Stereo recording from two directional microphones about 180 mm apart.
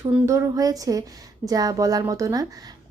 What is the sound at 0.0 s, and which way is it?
A woman's voice, 15° right (ahead or behind).